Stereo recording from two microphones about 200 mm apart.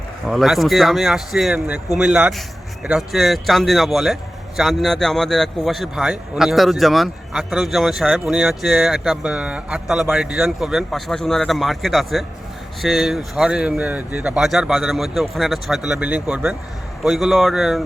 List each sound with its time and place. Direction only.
0.3 s a man's voice: centre (ahead or behind)